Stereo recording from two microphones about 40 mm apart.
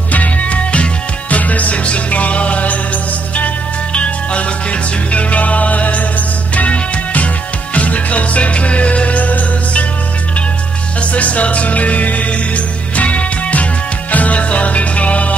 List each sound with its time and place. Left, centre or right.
0.1 s music: left
11.0 s music: left